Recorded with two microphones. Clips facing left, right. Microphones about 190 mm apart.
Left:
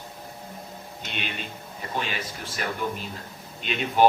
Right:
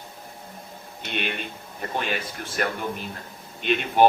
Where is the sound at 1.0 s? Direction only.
55° right (ahead or behind).